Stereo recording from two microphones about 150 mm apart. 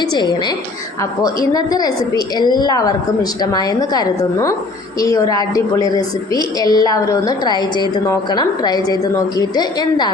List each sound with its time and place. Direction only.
0.0 s a woman's voice: 30° left (ahead or behind)